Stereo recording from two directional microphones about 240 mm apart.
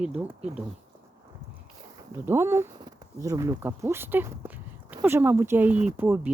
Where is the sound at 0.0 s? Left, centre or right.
Centre.